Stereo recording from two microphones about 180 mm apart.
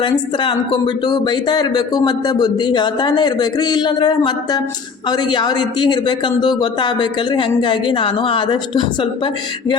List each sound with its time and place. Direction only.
0.0 s a man's voice: 25° left (ahead or behind)